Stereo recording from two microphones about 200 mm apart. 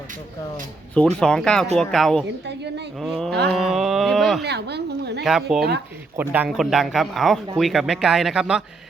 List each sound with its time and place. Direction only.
1.2 s speech: 5° left (ahead or behind)
2.5 s speech: 55° right (ahead or behind)
3.0 s speech: centre (ahead or behind)
4.4 s a woman's voice: 55° right (ahead or behind)
5.2 s speech: centre (ahead or behind)